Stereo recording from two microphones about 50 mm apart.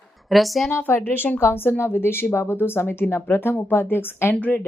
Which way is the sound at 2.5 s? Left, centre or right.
Left.